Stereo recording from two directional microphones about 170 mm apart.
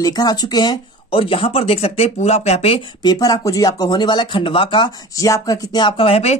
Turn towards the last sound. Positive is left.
turn(degrees=35)  # may be behind; listen again after turning